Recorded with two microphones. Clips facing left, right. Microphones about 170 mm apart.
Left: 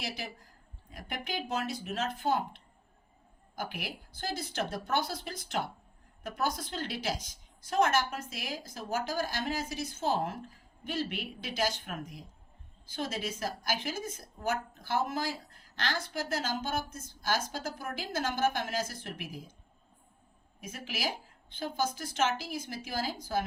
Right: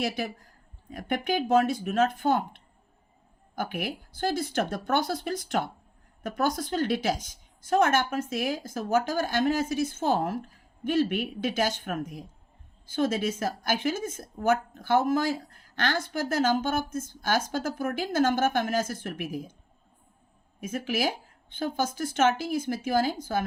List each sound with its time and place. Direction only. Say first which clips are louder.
0.9 s a woman's voice: right 11 dB; 55° right (ahead or behind)
20.6 s a woman's voice: right 10 dB; 50° right (ahead or behind)